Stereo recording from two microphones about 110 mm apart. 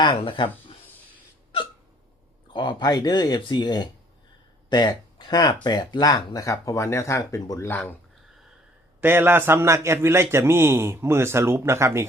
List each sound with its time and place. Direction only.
0.2 s speech: 50° left (ahead or behind)
2.5 s speech: 45° left (ahead or behind); by 7.7 s 30° left (ahead or behind)
7.7 s speech: 15° left (ahead or behind)
9.0 s a man's voice: 20° right (ahead or behind)